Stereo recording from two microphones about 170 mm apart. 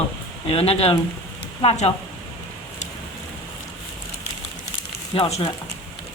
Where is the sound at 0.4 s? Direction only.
35° left (ahead or behind).